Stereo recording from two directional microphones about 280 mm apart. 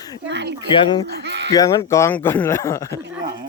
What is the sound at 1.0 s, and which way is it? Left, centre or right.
Speech, right.